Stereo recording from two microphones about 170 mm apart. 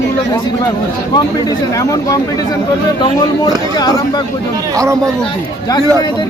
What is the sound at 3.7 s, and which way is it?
Speech, 25° left (ahead or behind).